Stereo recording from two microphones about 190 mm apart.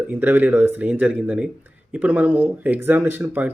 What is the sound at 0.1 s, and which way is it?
Speech, 10° right (ahead or behind).